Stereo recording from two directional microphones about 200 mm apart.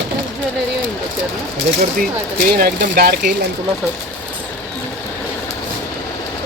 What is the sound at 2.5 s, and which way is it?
Speech, 50° right (ahead or behind).